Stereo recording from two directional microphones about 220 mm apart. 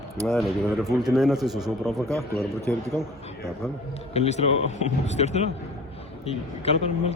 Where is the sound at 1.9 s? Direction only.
15° right (ahead or behind).